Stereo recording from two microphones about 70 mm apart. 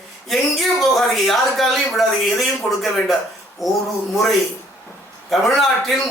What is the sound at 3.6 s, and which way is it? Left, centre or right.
Speech, centre.